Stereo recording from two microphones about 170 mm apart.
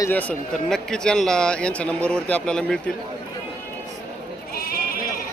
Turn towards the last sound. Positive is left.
turn(degrees=60)  # may be behind; listen again after turning